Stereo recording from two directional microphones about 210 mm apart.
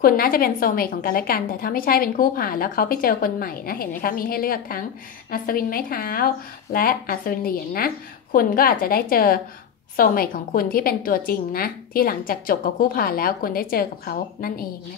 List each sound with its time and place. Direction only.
0.0 s a woman's voice: 45° left (ahead or behind)